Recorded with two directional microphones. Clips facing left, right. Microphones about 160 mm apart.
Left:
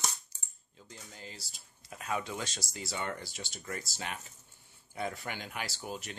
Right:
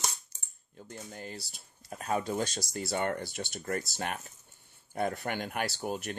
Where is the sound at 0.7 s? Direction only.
55° right (ahead or behind).